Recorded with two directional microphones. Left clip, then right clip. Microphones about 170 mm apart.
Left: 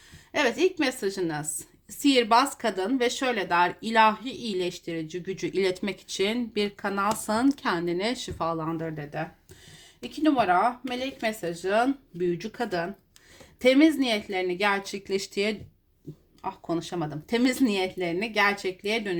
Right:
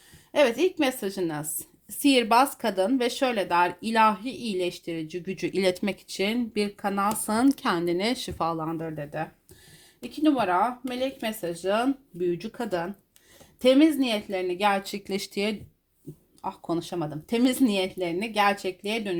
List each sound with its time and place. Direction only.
0.3 s speech: 30° right (ahead or behind)
10.2 s speech: 25° right (ahead or behind)